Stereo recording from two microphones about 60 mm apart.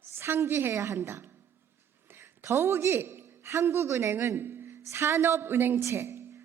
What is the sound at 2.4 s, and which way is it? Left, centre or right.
A woman's voice, right.